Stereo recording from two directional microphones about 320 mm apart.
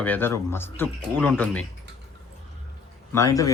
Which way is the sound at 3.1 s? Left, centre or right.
Centre.